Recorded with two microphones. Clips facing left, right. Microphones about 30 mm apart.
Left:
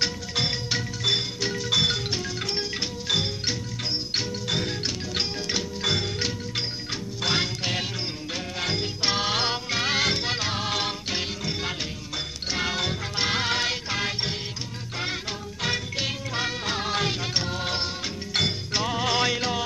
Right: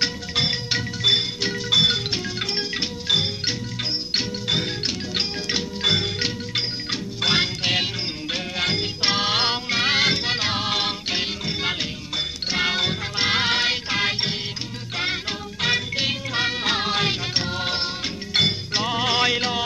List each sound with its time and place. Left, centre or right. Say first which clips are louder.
0.0 s music: right 3 dB; right
2.0 s music: right 3 dB; right
3.1 s music: right 4 dB; right
15.6 s music: right 5 dB; right